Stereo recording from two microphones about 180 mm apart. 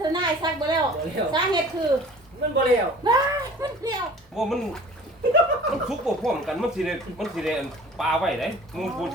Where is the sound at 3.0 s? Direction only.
25° right (ahead or behind).